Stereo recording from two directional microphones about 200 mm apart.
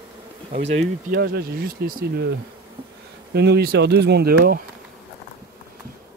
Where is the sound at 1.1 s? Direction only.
50° right (ahead or behind).